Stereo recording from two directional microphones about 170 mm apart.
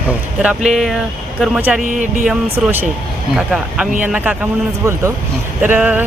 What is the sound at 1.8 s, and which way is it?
Speech, 45° right (ahead or behind).